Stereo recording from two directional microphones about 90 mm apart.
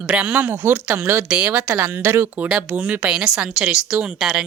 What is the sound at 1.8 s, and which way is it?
A woman's voice, 30° right (ahead or behind).